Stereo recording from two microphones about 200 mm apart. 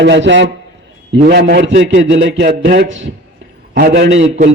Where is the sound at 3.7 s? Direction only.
55° right (ahead or behind).